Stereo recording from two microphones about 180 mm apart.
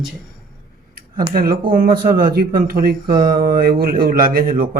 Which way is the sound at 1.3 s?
55° right (ahead or behind).